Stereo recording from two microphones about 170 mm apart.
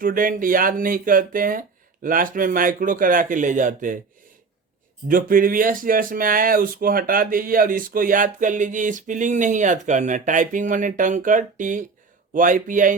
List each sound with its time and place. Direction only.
0.0 s speech: 55° right (ahead or behind)
5.0 s speech: 55° right (ahead or behind)